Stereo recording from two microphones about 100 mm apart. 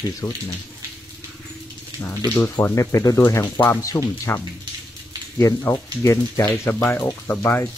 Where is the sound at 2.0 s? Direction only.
20° left (ahead or behind).